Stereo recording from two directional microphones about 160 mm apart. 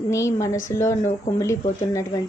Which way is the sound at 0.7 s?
20° left (ahead or behind).